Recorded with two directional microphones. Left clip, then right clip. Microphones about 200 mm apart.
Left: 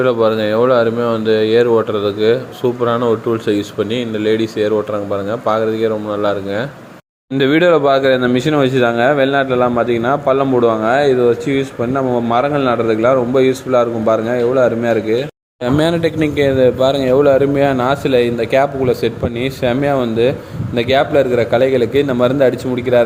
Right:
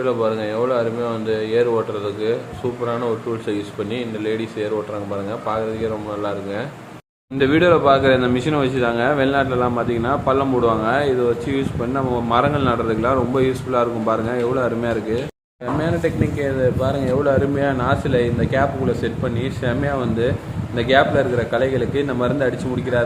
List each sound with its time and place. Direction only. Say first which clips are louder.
0.0 s speech: left 7 dB; 35° left (ahead or behind)
15.8 s speech: left 6 dB; 50° left (ahead or behind); by 23.0 s 30° left (ahead or behind)